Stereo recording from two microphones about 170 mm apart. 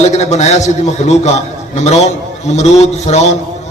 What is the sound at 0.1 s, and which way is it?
A man's voice, 40° left (ahead or behind).